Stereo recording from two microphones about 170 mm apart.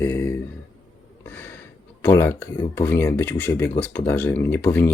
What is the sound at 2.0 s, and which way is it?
Speech, 15° left (ahead or behind).